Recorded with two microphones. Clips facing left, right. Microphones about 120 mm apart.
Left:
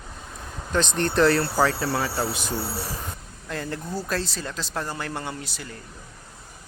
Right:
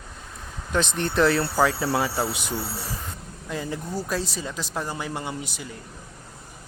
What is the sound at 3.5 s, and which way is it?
Speech, 10° right (ahead or behind).